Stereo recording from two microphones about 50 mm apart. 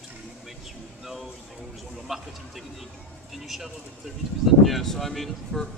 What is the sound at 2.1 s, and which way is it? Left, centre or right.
Speech, centre.